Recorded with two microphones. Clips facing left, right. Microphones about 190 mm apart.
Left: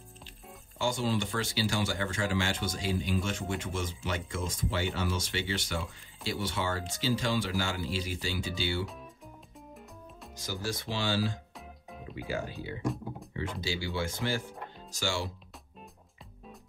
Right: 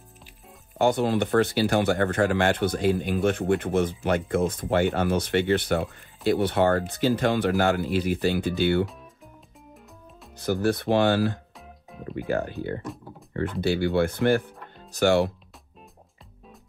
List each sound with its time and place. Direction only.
0.7 s speech: 60° right (ahead or behind)
10.3 s speech: 60° right (ahead or behind)